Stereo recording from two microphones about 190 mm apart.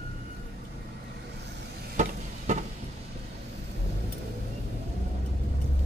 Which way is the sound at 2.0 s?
40° right (ahead or behind).